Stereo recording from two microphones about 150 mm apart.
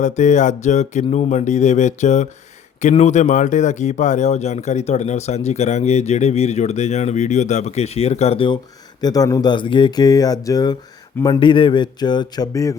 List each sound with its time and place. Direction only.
0.0 s speech: 55° left (ahead or behind)
9.0 s speech: 25° left (ahead or behind)